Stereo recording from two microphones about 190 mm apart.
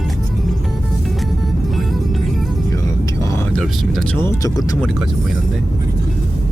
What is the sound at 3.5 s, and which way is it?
Speech, 5° left (ahead or behind).